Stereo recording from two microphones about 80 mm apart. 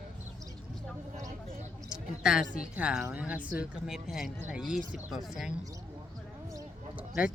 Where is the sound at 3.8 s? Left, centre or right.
Centre.